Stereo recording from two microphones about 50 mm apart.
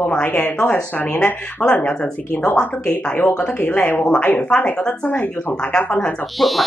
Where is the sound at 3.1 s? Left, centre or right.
Left.